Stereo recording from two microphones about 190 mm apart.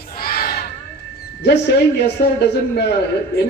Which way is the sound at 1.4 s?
60° left (ahead or behind).